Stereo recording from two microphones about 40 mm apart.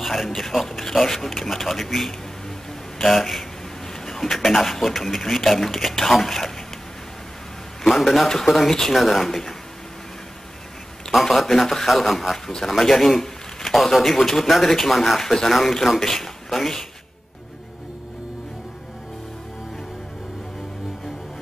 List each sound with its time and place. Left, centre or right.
0.0 s a man's voice: centre
7.8 s a man's voice: centre
11.1 s a man's voice: centre